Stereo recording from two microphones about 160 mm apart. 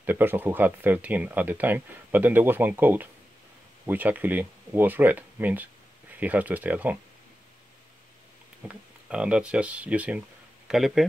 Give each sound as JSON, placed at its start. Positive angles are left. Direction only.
{"t": 0.0, "sound": "speech", "side_deg": -10}
{"t": 8.6, "sound": "speech", "side_deg": -5}